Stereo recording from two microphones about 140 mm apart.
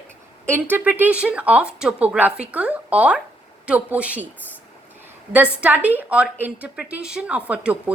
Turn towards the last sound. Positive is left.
turn(degrees=-10)  # may be behind; listen again after turning